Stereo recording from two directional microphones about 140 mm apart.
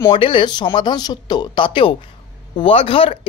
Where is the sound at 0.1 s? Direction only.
35° left (ahead or behind).